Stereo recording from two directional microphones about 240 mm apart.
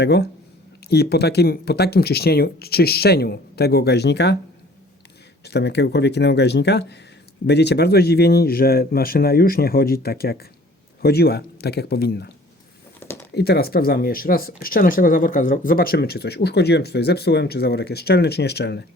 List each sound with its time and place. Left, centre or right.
0.0 s speech: left
5.5 s speech: left
13.0 s a sound: centre
13.3 s speech: left